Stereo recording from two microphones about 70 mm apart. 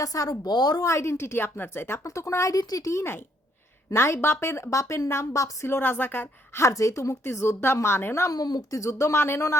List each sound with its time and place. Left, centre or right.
0.0 s speech: left
0.8 s a woman's voice: left
2.0 s a woman's voice: left
5.6 s a woman's voice: left
6.6 s a woman's voice: left
8.3 s a woman's voice: left
8.7 s speech: left